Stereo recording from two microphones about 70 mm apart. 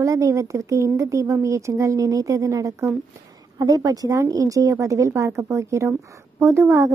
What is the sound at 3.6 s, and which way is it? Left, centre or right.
A woman's voice, right.